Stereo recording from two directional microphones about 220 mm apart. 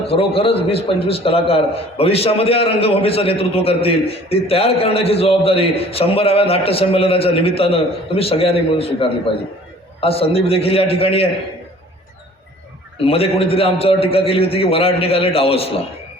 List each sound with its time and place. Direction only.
0.0 s a man's voice: 25° left (ahead or behind)
13.0 s a man's voice: 25° left (ahead or behind)